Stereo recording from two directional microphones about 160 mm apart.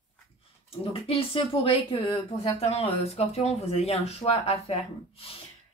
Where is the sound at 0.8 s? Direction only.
35° left (ahead or behind).